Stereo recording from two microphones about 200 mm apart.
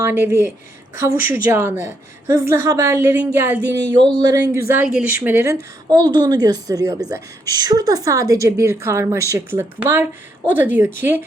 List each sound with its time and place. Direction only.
0.0 s speech: 10° right (ahead or behind)
4.7 s speech: 5° right (ahead or behind)